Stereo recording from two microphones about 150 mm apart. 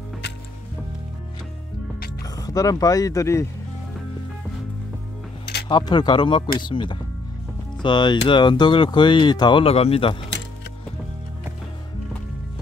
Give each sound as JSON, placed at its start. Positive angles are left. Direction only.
{"t": 2.3, "sound": "speech", "side_deg": 25}
{"t": 5.7, "sound": "speech", "side_deg": 30}